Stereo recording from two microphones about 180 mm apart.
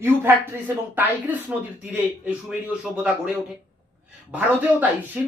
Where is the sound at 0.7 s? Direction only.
15° right (ahead or behind).